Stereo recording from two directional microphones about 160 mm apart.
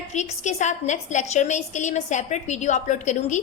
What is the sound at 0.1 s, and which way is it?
A woman's voice, 45° left (ahead or behind).